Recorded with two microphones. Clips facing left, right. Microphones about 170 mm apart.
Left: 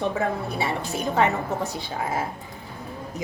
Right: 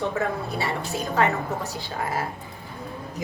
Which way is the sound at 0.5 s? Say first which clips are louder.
Left 1 dB; 20° left (ahead or behind).